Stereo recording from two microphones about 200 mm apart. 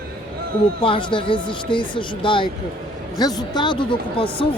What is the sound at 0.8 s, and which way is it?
Speech, 25° left (ahead or behind).